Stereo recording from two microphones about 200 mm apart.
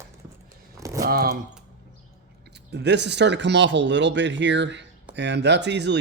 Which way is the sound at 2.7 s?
60° right (ahead or behind).